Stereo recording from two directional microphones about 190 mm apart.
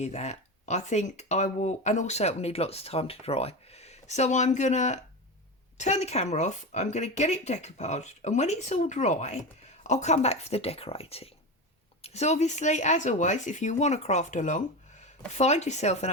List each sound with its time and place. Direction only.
0.0 s speech: 35° left (ahead or behind)